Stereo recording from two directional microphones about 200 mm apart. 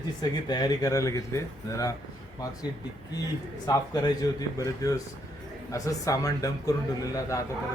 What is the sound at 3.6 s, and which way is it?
Speech, 20° left (ahead or behind).